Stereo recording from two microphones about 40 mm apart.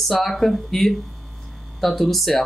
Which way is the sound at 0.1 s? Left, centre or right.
Centre.